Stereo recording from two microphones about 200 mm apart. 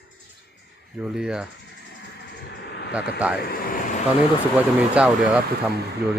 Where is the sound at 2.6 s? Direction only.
55° left (ahead or behind).